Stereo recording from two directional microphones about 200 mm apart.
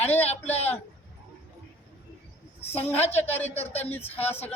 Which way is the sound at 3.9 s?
10° left (ahead or behind).